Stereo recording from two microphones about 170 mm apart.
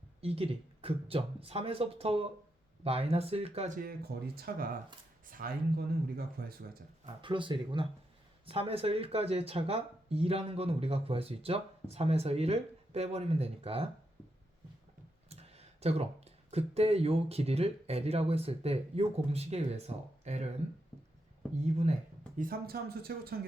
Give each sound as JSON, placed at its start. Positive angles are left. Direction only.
{"t": 0.2, "sound": "speech", "side_deg": -35}
{"t": 3.8, "sound": "speech", "side_deg": -65}
{"t": 7.2, "sound": "speech", "side_deg": -30}
{"t": 15.3, "sound": "speech", "side_deg": -40}
{"t": 21.6, "sound": "speech", "side_deg": -40}
{"t": 22.4, "sound": "speech", "side_deg": -60}